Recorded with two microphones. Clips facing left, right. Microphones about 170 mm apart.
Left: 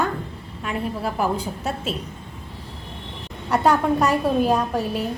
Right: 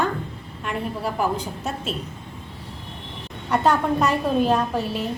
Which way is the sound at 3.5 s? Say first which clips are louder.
Left 1 dB; 10° left (ahead or behind).